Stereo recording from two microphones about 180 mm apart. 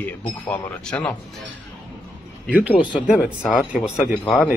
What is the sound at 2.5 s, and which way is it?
Speech, 10° right (ahead or behind).